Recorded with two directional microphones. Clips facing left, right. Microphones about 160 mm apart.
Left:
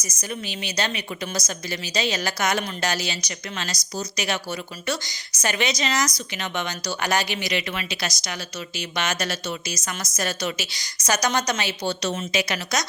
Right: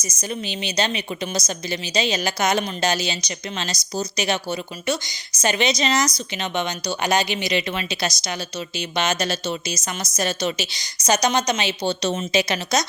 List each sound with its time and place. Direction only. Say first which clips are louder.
0.0 s a woman's voice: right 3 dB; 25° right (ahead or behind)